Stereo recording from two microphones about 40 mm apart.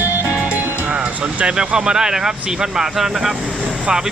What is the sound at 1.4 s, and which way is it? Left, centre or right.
Speech, right.